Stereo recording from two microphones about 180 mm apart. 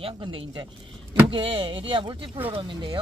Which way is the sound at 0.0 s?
30° right (ahead or behind).